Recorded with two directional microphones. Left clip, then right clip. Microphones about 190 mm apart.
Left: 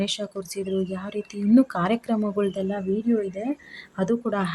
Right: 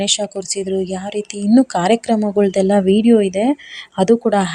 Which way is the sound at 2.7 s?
35° right (ahead or behind).